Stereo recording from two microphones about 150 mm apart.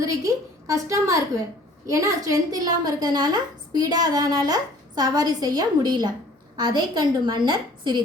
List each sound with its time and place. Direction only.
0.0 s a woman's voice: 20° right (ahead or behind)